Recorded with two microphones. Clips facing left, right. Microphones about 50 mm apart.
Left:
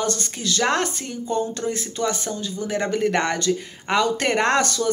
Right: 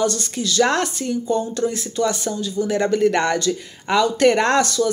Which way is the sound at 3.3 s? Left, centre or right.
Left.